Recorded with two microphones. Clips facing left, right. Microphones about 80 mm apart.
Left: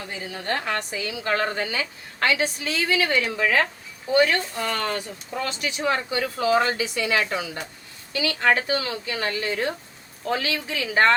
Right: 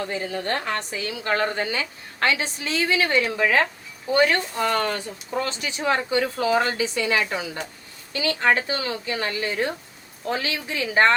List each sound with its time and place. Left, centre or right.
0.0 s a woman's voice: right